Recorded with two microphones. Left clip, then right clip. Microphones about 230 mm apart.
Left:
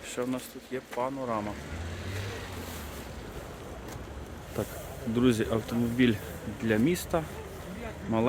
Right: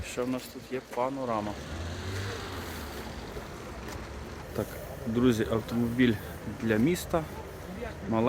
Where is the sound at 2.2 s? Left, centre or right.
Right.